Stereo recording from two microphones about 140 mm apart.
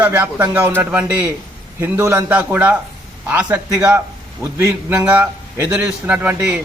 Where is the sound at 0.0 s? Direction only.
15° right (ahead or behind).